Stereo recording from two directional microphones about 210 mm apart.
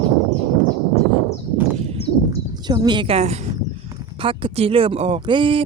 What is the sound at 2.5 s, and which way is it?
Speech, 20° right (ahead or behind).